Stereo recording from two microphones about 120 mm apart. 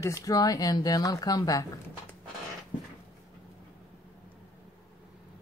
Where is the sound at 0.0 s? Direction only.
30° left (ahead or behind).